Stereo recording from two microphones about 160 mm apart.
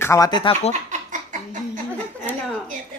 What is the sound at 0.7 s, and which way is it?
Snicker, 50° right (ahead or behind).